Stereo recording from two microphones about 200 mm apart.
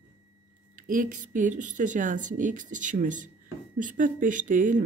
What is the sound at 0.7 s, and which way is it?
Speech, 40° right (ahead or behind).